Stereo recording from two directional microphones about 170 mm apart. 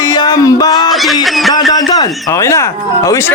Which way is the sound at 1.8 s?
20° left (ahead or behind).